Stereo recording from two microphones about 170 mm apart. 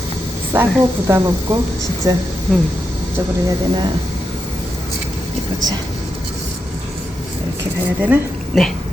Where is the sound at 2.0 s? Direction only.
20° right (ahead or behind).